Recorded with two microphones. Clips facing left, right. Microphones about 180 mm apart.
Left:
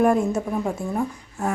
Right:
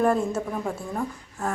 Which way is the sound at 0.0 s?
15° left (ahead or behind).